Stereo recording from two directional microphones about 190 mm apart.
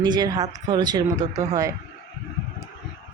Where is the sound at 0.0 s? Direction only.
20° right (ahead or behind).